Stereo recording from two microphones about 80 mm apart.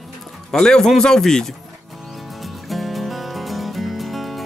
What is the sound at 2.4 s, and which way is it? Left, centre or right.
Music, centre.